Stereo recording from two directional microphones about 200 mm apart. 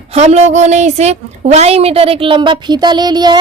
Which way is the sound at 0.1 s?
30° right (ahead or behind).